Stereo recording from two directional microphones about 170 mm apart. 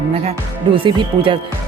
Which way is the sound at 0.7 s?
30° right (ahead or behind).